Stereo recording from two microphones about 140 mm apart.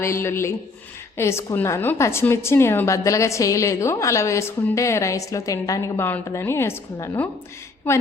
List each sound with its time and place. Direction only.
0.0 s a woman's voice: 20° left (ahead or behind)